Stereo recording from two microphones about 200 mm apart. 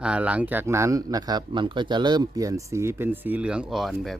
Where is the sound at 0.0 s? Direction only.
5° right (ahead or behind).